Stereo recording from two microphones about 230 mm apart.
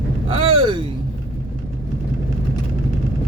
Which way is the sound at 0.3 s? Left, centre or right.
Right.